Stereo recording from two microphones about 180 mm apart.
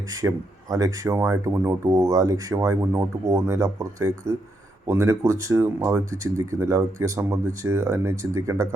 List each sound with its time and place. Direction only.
0.1 s speech: 20° right (ahead or behind)